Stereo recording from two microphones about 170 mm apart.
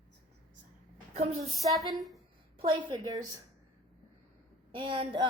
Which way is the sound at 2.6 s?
25° right (ahead or behind).